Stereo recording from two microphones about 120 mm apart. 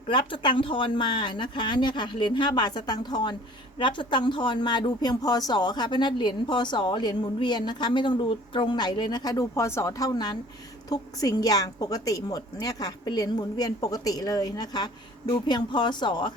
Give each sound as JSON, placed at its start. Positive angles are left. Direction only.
{"t": 0.1, "sound": "speech", "side_deg": 40}